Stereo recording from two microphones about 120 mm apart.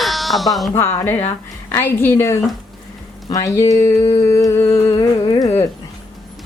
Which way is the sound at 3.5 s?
25° left (ahead or behind).